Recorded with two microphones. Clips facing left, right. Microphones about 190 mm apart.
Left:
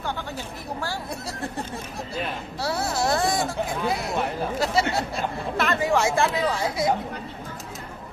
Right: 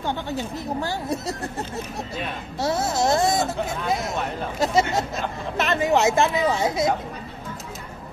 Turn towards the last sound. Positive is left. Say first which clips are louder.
# right 3 dB
turn(degrees=-25)  # may be behind; listen again after turning